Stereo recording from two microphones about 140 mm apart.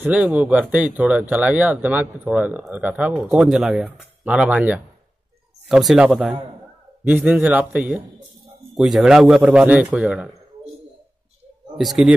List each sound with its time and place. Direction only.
0.0 s speech: 10° right (ahead or behind)
7.1 s speech: 10° right (ahead or behind)
11.7 s speech: centre (ahead or behind)